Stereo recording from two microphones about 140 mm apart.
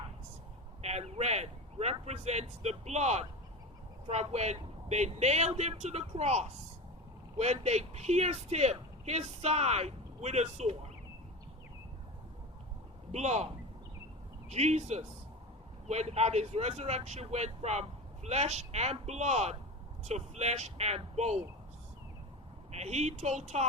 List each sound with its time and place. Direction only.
0.8 s speech: 50° right (ahead or behind)
13.1 s speech: 50° right (ahead or behind)
14.5 s speech: 50° right (ahead or behind)
22.7 s speech: 50° right (ahead or behind)